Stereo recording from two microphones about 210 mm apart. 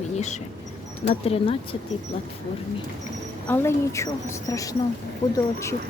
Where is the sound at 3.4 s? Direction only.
10° left (ahead or behind).